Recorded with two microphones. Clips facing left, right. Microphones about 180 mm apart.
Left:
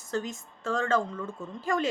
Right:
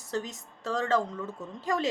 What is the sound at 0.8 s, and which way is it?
A woman's voice, 20° right (ahead or behind).